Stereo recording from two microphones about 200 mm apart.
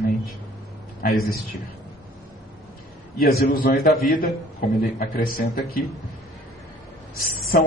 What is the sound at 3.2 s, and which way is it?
Speech, 50° left (ahead or behind).